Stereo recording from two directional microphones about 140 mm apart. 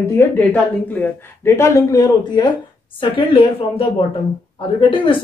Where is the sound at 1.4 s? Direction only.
20° left (ahead or behind).